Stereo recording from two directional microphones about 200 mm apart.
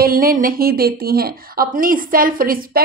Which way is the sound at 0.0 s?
45° right (ahead or behind).